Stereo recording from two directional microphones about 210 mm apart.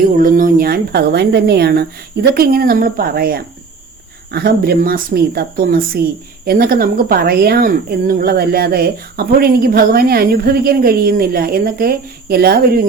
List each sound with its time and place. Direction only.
0.2 s a woman's voice: 40° right (ahead or behind)